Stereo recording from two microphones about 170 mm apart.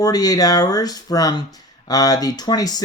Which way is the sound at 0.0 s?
20° left (ahead or behind).